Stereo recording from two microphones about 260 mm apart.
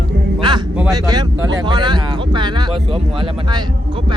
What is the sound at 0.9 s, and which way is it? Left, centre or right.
Speech, centre.